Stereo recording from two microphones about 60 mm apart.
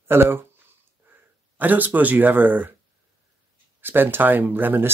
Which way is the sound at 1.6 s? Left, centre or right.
Right.